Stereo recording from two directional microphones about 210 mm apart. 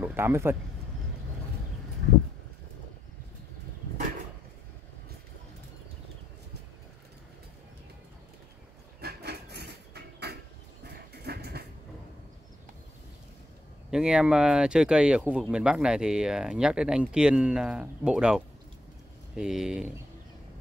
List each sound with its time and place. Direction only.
0.0 s speech: 10° right (ahead or behind)
9.0 s a sound: 50° right (ahead or behind)
11.2 s vehicle: 50° right (ahead or behind)
13.8 s speech: 5° right (ahead or behind)